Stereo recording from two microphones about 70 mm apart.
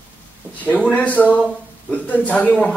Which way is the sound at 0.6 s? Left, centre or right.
Left.